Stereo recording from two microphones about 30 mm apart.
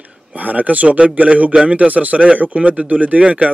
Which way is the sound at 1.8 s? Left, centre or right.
Right.